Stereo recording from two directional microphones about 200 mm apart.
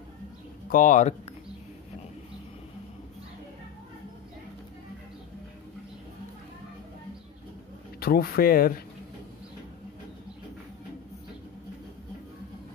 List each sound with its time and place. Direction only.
0.7 s speech: 40° left (ahead or behind)
8.0 s speech: 50° left (ahead or behind)